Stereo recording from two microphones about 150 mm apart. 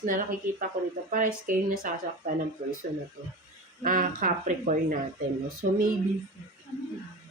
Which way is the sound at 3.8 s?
65° right (ahead or behind).